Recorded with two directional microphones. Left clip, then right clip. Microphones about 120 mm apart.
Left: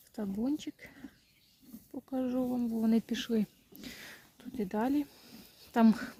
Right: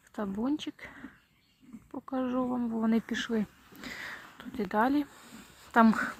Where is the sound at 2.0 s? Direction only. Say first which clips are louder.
Right 2 dB; 25° left (ahead or behind).